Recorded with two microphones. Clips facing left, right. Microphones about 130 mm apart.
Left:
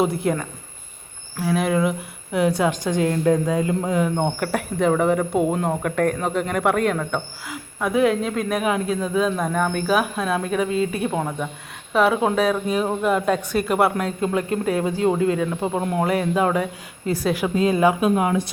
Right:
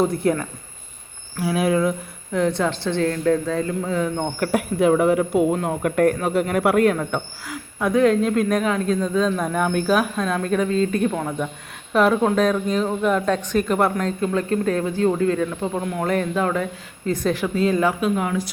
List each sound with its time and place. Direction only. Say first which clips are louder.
0.0 s a woman's voice: right 1 dB; 5° left (ahead or behind)
4.5 s a woman's voice: right 4 dB; 5° right (ahead or behind)
9.5 s a woman's voice: right 1 dB; 5° right (ahead or behind)
14.2 s a woman's voice: right 1 dB; 20° left (ahead or behind)
15.8 s speech: left 3 dB; 30° left (ahead or behind)
16.0 s a woman's voice: right 1 dB; 10° left (ahead or behind)